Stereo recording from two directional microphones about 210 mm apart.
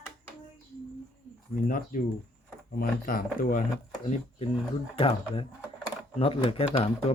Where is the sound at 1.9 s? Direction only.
40° left (ahead or behind).